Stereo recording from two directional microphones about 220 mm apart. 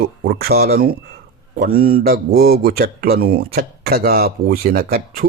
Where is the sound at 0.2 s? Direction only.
45° right (ahead or behind).